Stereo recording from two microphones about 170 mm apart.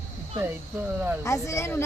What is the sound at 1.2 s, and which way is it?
Speech, 15° left (ahead or behind).